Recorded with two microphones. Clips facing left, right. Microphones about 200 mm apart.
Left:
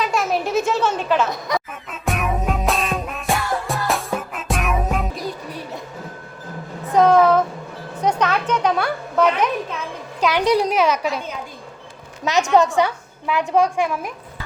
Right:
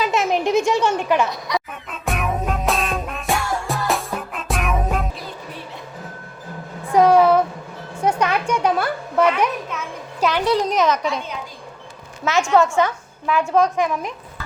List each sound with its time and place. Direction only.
0.1 s speech: 20° right (ahead or behind)
1.3 s speech: 50° left (ahead or behind)
1.9 s music: centre (ahead or behind)
6.9 s a sound: 10° right (ahead or behind)
10.3 s a woman's voice: 15° left (ahead or behind)
12.2 s a woman's voice: 20° left (ahead or behind)